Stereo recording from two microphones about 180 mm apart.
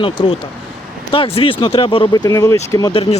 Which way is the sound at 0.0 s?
30° left (ahead or behind).